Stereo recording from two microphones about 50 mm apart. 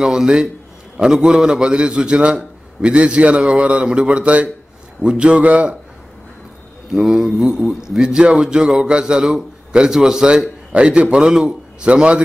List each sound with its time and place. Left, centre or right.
0.0 s a man's voice: centre
6.9 s a man's voice: centre